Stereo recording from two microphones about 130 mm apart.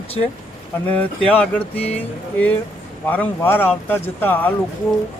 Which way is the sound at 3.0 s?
15° left (ahead or behind).